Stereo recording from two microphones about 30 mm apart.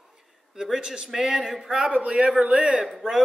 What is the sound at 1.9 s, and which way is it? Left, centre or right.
Speech, right.